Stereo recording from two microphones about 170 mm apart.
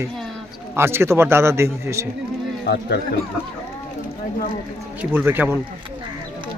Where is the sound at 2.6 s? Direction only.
75° left (ahead or behind).